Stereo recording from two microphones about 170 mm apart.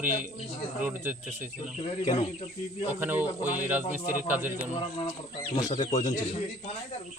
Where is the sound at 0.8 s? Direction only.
10° right (ahead or behind).